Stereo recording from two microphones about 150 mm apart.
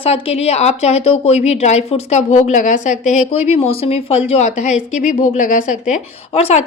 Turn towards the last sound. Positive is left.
turn(degrees=45)  # may be behind; listen again after turning